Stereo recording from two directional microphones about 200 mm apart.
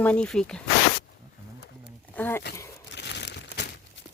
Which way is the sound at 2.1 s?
10° left (ahead or behind).